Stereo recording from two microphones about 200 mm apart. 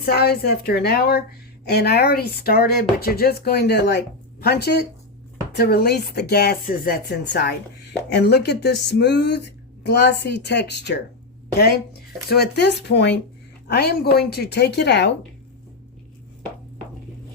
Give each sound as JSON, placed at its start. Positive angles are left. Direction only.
{"t": 0.0, "sound": "speech", "side_deg": 50}
{"t": 12.3, "sound": "speech", "side_deg": 55}